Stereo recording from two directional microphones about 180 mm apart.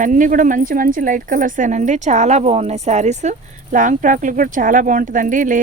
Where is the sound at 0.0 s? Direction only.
45° right (ahead or behind).